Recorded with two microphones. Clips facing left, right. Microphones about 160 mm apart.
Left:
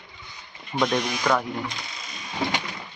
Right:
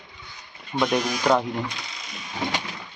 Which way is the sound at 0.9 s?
15° right (ahead or behind).